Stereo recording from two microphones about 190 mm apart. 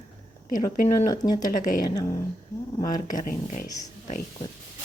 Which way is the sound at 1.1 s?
20° left (ahead or behind).